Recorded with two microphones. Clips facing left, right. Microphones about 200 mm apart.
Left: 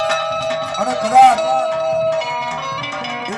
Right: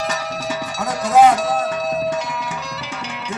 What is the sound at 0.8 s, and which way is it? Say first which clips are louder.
Music: left 1 dB; 60° left (ahead or behind).